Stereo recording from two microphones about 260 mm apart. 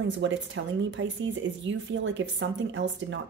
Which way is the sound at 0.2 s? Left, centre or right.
Right.